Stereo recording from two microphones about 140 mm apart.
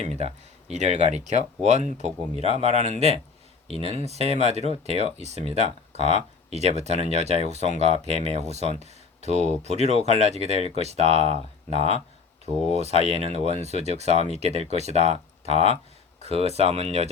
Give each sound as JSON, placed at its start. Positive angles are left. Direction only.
{"t": 0.2, "sound": "speech", "side_deg": -55}